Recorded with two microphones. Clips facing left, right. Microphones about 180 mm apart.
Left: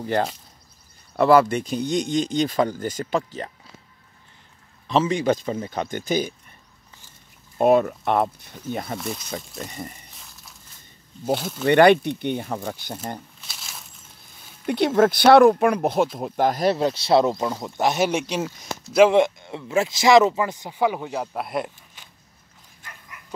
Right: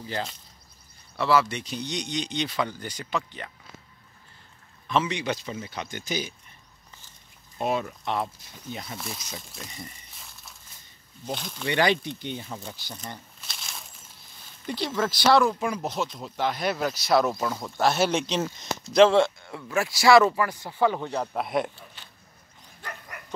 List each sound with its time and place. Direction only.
0.0 s speech: 60° left (ahead or behind); by 3.5 s 40° left (ahead or behind)
4.8 s speech: 40° left (ahead or behind)
7.5 s speech: 55° left (ahead or behind)
10.1 s a sound: centre (ahead or behind)
11.3 s speech: 5° left (ahead or behind)
11.6 s speech: 55° left (ahead or behind)
13.5 s a sound: centre (ahead or behind)
14.7 s speech: 60° left (ahead or behind); by 16.7 s 40° left (ahead or behind)
16.7 s speech: 30° left (ahead or behind); by 22.0 s centre (ahead or behind)
22.8 s dog: 55° right (ahead or behind)